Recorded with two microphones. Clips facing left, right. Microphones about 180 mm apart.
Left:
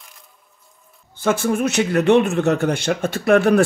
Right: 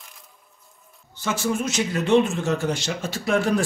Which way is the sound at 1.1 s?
55° left (ahead or behind).